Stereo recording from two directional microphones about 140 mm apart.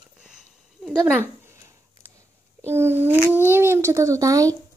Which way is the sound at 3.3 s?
15° right (ahead or behind).